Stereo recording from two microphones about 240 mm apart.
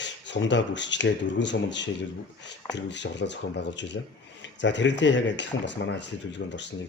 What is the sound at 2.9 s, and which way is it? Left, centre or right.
Speech, left.